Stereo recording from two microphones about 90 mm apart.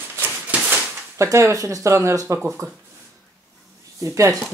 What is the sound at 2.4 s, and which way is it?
Speech, 10° right (ahead or behind).